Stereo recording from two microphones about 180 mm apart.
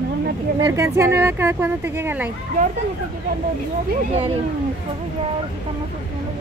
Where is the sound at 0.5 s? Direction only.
20° right (ahead or behind).